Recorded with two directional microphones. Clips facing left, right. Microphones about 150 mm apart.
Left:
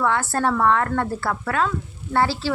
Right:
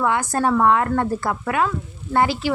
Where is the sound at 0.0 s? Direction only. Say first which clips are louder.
Right 1 dB; 15° right (ahead or behind).